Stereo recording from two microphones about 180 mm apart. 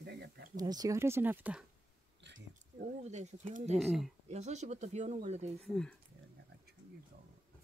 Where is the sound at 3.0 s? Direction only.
40° right (ahead or behind).